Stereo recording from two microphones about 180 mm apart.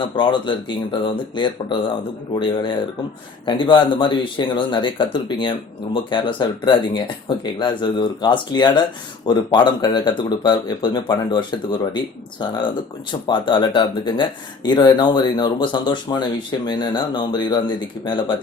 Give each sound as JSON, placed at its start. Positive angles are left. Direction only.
{"t": 0.2, "sound": "speech", "side_deg": 25}